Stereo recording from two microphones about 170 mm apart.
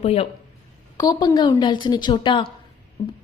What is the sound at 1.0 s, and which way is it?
A woman's voice, 20° left (ahead or behind).